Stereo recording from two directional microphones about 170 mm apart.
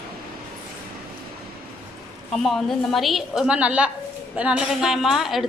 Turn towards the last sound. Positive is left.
turn(degrees=0)  # may be behind; listen again after turning